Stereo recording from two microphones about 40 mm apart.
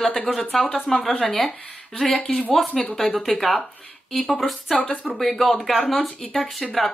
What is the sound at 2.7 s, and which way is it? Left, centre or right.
Speech, left.